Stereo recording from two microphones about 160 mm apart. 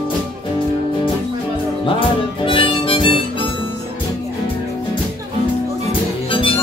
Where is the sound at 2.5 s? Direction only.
35° left (ahead or behind).